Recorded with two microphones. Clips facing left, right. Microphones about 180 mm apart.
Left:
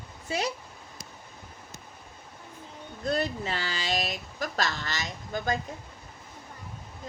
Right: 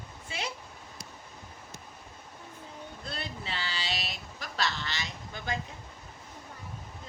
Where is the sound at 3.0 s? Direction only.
45° left (ahead or behind).